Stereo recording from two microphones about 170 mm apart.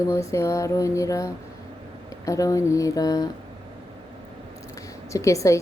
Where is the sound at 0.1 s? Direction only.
15° left (ahead or behind).